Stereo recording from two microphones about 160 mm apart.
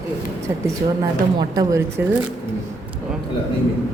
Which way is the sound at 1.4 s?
25° right (ahead or behind).